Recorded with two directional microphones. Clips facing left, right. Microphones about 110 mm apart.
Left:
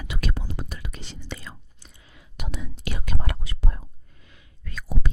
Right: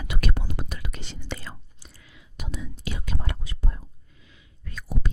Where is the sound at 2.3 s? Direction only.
70° left (ahead or behind).